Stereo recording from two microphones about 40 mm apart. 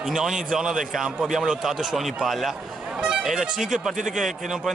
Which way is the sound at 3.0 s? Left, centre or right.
Right.